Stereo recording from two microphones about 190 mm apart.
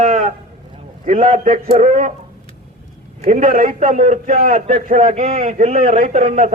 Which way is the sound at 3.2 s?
35° right (ahead or behind).